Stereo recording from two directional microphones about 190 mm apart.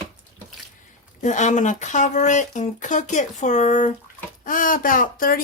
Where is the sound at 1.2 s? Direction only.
40° left (ahead or behind).